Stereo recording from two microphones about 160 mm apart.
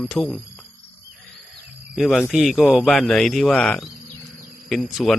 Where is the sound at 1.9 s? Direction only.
Centre (ahead or behind).